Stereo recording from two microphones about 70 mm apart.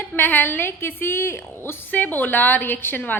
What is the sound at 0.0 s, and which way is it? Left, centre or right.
A woman's voice, left.